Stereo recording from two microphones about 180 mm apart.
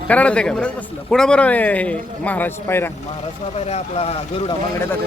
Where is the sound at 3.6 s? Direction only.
35° left (ahead or behind).